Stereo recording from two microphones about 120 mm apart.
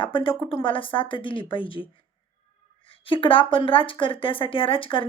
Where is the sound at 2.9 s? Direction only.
45° left (ahead or behind).